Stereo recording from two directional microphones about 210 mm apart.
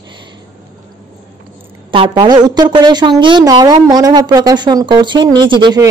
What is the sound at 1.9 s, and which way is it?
A woman's voice, 25° right (ahead or behind).